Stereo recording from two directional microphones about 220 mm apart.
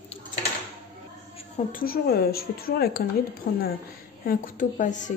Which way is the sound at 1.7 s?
40° left (ahead or behind).